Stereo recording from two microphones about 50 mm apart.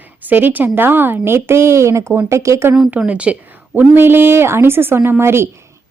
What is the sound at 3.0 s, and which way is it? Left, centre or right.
Speech, right.